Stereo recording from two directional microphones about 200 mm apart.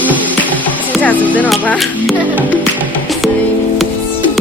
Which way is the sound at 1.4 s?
5° left (ahead or behind).